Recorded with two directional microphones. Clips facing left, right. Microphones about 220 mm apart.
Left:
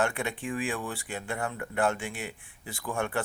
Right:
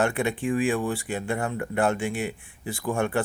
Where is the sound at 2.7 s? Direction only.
35° right (ahead or behind).